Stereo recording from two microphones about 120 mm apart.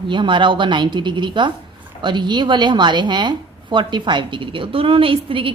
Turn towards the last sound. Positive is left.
turn(degrees=-45)  # may be behind; listen again after turning